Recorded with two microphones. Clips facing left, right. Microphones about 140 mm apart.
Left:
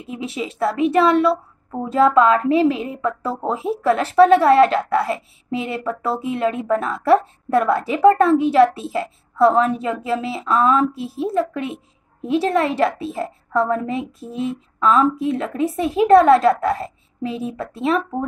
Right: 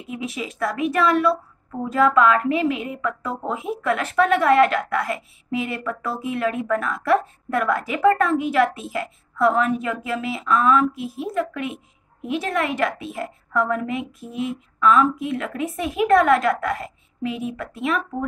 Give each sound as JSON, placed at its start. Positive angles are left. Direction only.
{"t": 0.0, "sound": "a woman's voice", "side_deg": 30}